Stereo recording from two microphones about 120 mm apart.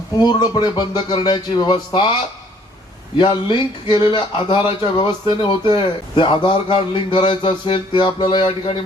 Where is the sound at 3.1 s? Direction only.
40° left (ahead or behind).